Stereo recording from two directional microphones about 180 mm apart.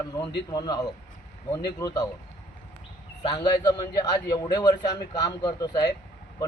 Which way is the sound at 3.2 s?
25° left (ahead or behind).